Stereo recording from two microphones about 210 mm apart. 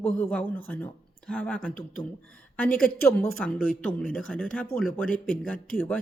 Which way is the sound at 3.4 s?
5° left (ahead or behind).